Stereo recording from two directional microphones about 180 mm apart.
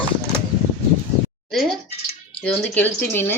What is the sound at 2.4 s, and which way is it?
Speech, 10° left (ahead or behind).